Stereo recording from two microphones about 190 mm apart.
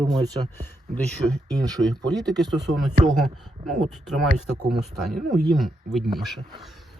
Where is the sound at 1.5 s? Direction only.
20° right (ahead or behind).